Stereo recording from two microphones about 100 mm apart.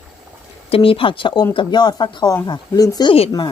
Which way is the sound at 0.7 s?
70° left (ahead or behind).